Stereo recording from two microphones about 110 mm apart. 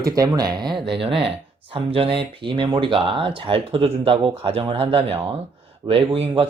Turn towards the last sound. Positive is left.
turn(degrees=-60)  # may be behind; listen again after turning